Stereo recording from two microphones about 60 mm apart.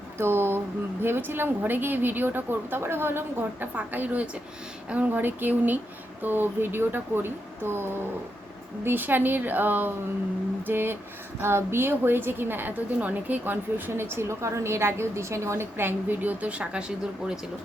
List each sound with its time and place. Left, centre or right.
0.2 s a woman's voice: right
3.8 s a woman's voice: right
15.8 s a woman's voice: right